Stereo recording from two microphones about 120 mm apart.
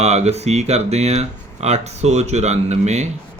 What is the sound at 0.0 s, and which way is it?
Speech, 65° right (ahead or behind).